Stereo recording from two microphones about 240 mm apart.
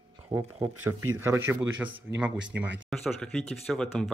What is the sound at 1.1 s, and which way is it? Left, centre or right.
Speech, centre.